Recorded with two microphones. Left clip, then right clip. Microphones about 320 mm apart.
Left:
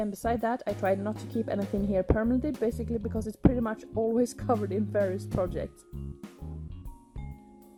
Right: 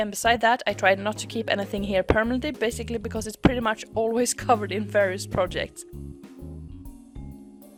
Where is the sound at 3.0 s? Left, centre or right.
Right.